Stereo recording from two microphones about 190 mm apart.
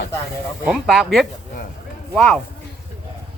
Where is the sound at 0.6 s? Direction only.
5° right (ahead or behind).